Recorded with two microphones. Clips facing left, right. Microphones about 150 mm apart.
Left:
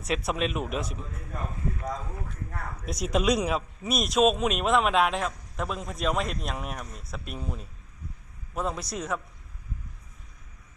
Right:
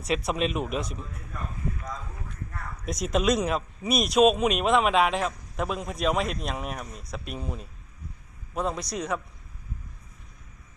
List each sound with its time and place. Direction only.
0.3 s speech: centre (ahead or behind)
2.8 s speech: 5° left (ahead or behind)